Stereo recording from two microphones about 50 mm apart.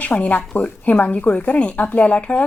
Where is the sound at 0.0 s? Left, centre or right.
Left.